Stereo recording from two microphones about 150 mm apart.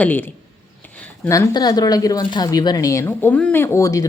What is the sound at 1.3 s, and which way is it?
Speech, 25° left (ahead or behind).